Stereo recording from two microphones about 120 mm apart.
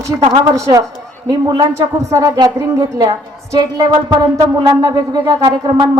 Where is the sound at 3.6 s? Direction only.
35° right (ahead or behind).